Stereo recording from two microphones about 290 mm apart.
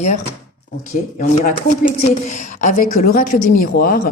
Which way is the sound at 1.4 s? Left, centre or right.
Left.